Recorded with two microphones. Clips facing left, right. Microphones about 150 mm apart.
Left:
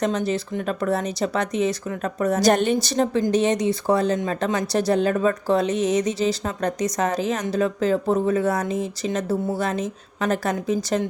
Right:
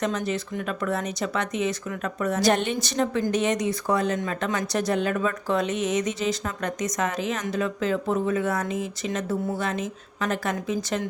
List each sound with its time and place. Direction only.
0.0 s speech: 35° left (ahead or behind)